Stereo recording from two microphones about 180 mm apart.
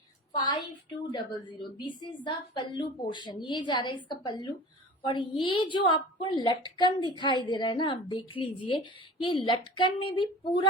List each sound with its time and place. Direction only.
0.3 s a woman's voice: 25° left (ahead or behind)